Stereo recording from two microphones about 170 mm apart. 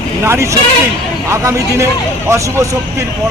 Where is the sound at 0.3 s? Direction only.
15° right (ahead or behind).